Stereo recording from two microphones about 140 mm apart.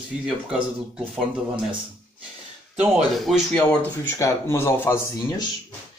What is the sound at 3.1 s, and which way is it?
Speech, centre (ahead or behind).